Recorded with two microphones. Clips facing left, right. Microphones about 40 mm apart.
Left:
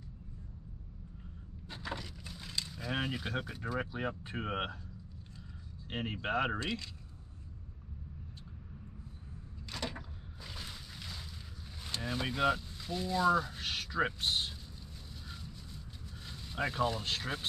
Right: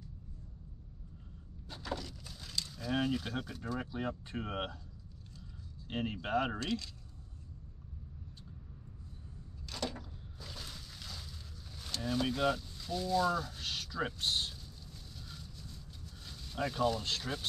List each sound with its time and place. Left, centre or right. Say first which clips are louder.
1.7 s speech: right 1 dB; centre
5.9 s speech: even; centre
9.7 s vehicle: right 1 dB; centre
11.8 s a sound: right 2 dB; centre